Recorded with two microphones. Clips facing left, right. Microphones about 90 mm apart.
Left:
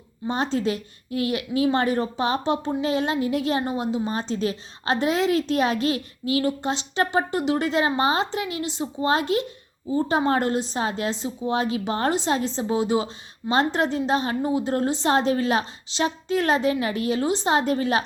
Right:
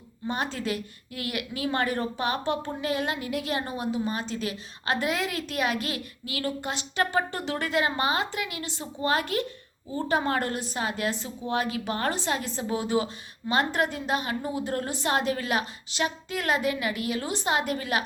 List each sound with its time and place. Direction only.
0.3 s speech: 25° left (ahead or behind)